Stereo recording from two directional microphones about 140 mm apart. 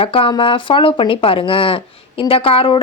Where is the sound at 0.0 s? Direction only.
40° left (ahead or behind).